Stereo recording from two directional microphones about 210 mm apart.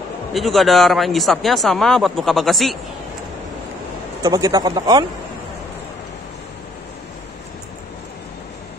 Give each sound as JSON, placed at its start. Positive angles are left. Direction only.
{"t": 0.3, "sound": "speech", "side_deg": 0}
{"t": 4.2, "sound": "speech", "side_deg": -20}